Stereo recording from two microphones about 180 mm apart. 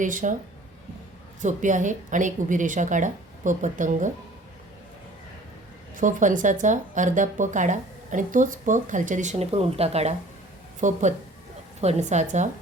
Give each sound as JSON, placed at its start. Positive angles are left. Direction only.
{"t": 0.0, "sound": "a woman's voice", "side_deg": -45}
{"t": 1.4, "sound": "a woman's voice", "side_deg": -45}
{"t": 6.0, "sound": "a woman's voice", "side_deg": -45}